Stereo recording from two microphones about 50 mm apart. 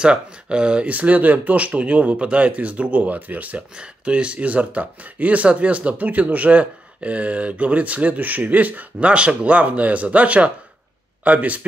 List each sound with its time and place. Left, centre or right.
0.0 s speech: centre
3.7 s speech: right